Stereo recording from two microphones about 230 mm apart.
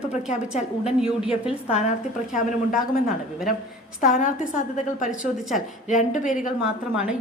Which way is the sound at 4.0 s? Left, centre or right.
Left.